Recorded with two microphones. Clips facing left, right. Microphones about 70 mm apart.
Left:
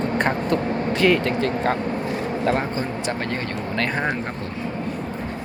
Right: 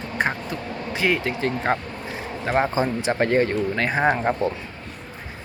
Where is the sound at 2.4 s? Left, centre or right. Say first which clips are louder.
Right 4 dB; centre.